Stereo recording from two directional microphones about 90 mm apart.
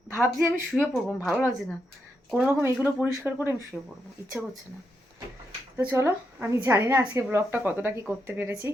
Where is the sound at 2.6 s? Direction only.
20° right (ahead or behind).